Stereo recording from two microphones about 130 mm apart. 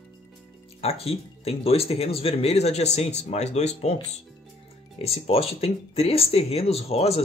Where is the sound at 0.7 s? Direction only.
50° left (ahead or behind).